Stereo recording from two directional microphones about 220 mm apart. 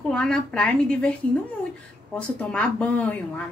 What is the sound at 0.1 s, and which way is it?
A woman's voice, 5° left (ahead or behind).